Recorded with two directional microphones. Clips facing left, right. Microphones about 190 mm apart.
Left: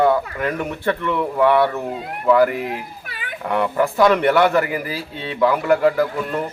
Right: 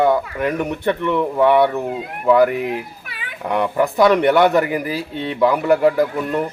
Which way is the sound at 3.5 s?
15° right (ahead or behind).